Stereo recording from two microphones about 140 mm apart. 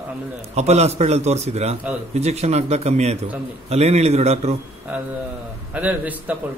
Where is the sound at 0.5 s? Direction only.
50° right (ahead or behind).